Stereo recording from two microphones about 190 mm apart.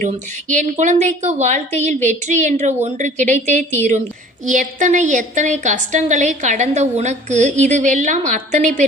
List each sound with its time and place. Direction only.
0.0 s a woman's voice: 40° right (ahead or behind)